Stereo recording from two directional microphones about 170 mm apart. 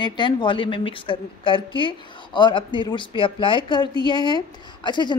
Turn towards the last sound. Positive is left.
turn(degrees=25)  # may be behind; listen again after turning